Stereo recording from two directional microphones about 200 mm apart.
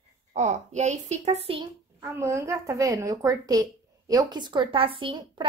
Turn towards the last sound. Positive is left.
turn(degrees=-25)  # may be behind; listen again after turning